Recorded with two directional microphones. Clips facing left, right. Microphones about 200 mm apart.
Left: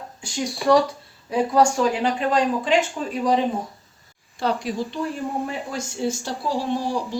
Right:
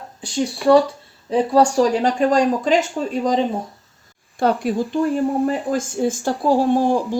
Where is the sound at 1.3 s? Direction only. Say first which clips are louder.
Right 3 dB; 30° right (ahead or behind).